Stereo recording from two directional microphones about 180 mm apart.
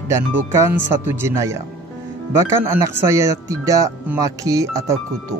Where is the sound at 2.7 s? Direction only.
15° right (ahead or behind).